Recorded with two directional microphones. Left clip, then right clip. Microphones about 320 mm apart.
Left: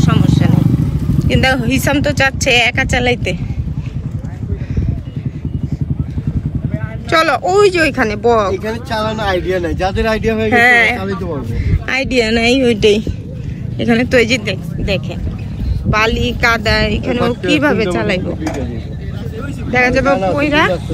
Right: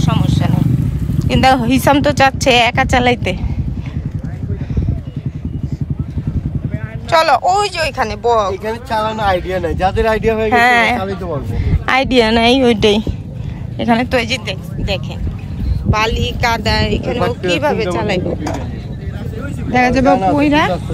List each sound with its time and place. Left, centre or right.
0.0 s vehicle: centre
1.4 s speech: centre
7.1 s speech: centre
19.7 s speech: centre